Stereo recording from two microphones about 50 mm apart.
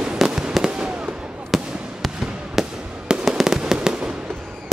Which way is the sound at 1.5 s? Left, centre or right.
Centre.